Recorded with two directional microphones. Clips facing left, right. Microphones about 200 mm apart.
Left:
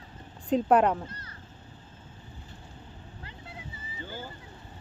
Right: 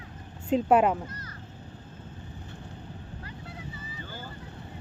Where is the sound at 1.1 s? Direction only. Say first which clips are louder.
Right 3 dB; 30° left (ahead or behind).